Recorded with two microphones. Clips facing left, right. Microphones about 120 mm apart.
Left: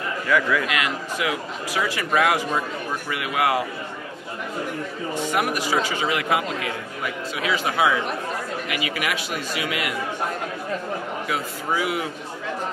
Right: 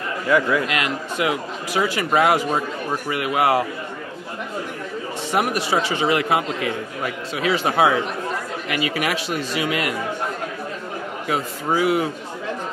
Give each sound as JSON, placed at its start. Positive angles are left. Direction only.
{"t": 0.3, "sound": "speech", "side_deg": -25}
{"t": 5.6, "sound": "speech", "side_deg": -30}
{"t": 7.5, "sound": "speech", "side_deg": -50}
{"t": 8.6, "sound": "speech", "side_deg": -35}
{"t": 11.2, "sound": "speech", "side_deg": -35}